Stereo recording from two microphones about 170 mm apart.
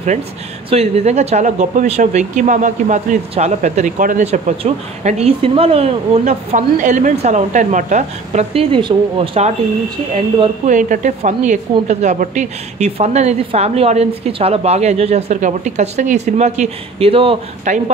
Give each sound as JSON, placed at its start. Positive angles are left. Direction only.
{"t": 0.7, "sound": "speech", "side_deg": -40}
{"t": 8.7, "sound": "speech", "side_deg": -30}
{"t": 10.4, "sound": "speech", "side_deg": -45}